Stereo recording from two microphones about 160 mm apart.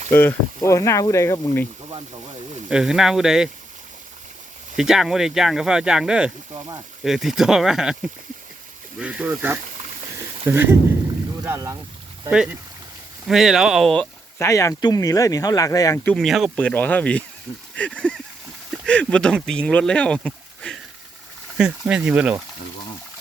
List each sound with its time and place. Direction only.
0.1 s speech: 15° left (ahead or behind)
2.6 s speech: 5° right (ahead or behind)
4.8 s speech: 5° right (ahead or behind)
6.5 s speech: 25° right (ahead or behind)
7.0 s speech: centre (ahead or behind)
9.0 s speech: 10° right (ahead or behind)
12.3 s speech: 5° right (ahead or behind)
14.3 s speech: 20° left (ahead or behind)
16.0 s speech: centre (ahead or behind)